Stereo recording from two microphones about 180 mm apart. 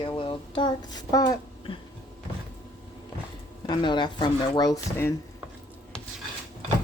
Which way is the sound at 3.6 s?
25° left (ahead or behind).